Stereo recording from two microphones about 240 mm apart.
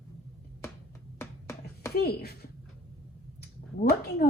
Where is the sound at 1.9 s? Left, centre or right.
Left.